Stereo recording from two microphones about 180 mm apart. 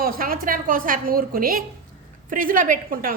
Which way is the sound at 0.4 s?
50° right (ahead or behind).